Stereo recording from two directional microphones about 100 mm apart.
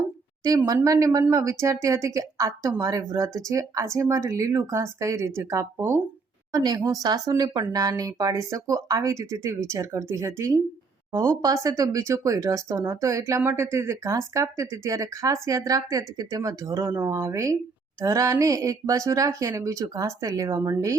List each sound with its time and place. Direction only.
0.4 s speech: 35° right (ahead or behind)
6.5 s a woman's voice: 45° right (ahead or behind)